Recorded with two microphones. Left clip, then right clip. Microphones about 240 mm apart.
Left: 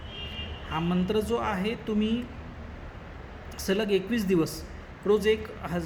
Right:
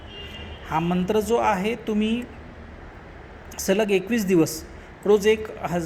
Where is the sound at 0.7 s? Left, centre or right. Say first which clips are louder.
Right 6 dB; centre.